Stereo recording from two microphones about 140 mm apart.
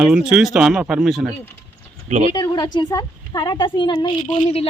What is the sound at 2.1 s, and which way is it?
Speech, 60° right (ahead or behind).